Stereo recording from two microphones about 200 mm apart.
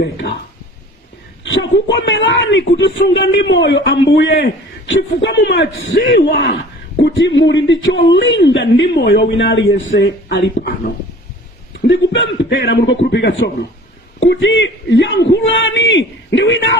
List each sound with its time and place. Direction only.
0.0 s a man's voice: 55° left (ahead or behind)
1.5 s a man's voice: 70° left (ahead or behind)
10.2 s a man's voice: 60° left (ahead or behind)
11.9 s a man's voice: 65° left (ahead or behind)